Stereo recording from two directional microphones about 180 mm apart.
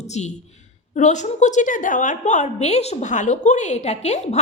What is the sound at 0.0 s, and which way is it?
A woman's voice, 40° left (ahead or behind).